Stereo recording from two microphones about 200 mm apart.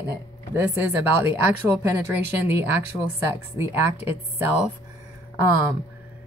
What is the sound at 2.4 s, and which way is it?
Speech, 10° right (ahead or behind).